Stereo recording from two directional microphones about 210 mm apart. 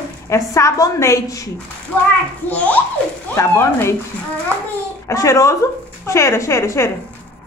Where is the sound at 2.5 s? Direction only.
5° left (ahead or behind).